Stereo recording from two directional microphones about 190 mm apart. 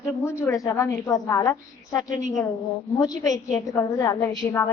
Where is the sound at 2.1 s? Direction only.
40° right (ahead or behind).